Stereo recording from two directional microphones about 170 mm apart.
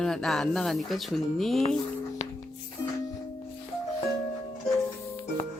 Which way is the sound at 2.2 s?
40° left (ahead or behind).